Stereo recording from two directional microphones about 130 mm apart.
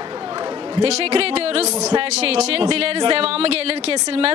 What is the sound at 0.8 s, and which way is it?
Speech, 55° right (ahead or behind).